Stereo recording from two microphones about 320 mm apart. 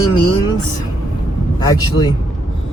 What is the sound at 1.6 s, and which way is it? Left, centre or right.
Speech, centre.